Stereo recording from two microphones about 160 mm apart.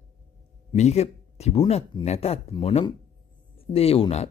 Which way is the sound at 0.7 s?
40° left (ahead or behind).